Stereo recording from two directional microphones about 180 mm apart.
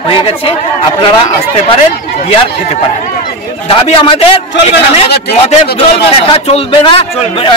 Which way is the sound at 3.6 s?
30° left (ahead or behind).